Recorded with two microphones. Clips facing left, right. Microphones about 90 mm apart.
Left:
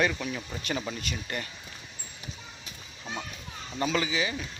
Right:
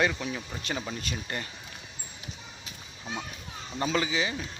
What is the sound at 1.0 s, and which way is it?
Speech, 30° right (ahead or behind).